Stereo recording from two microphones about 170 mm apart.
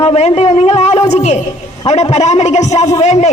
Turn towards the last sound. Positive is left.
turn(degrees=40)  # may be behind; listen again after turning